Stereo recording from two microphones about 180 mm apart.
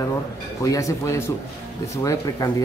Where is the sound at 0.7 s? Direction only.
15° left (ahead or behind).